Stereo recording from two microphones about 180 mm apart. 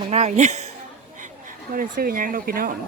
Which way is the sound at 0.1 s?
40° right (ahead or behind).